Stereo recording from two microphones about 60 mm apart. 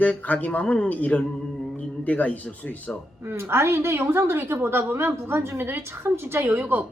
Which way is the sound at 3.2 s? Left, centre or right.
Right.